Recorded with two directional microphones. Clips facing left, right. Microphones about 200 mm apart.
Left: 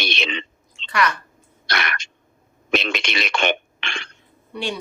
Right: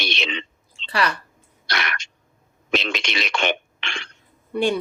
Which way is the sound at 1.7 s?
55° left (ahead or behind).